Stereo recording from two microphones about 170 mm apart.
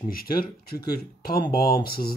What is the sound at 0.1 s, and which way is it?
Speech, 60° left (ahead or behind).